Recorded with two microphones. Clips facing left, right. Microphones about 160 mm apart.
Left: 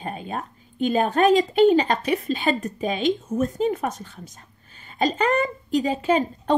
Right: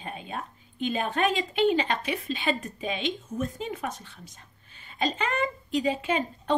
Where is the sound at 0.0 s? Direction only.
45° left (ahead or behind).